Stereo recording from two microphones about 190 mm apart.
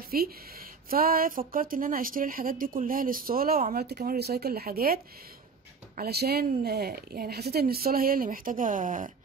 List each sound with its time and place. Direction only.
0.1 s a woman's voice: 50° right (ahead or behind)